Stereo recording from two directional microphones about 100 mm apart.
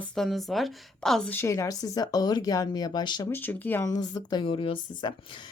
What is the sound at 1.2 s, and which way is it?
Speech, 25° left (ahead or behind).